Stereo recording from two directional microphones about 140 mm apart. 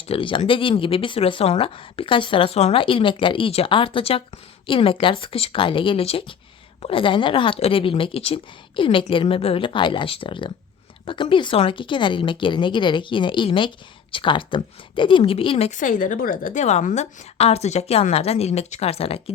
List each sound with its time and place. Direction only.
0.1 s speech: 40° left (ahead or behind)
15.8 s a woman's voice: 70° left (ahead or behind); by 19.2 s 45° left (ahead or behind)